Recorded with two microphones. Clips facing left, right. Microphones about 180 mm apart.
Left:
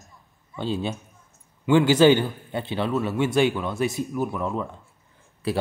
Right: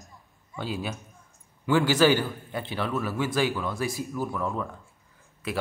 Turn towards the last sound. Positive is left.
turn(degrees=35)  # may be behind; listen again after turning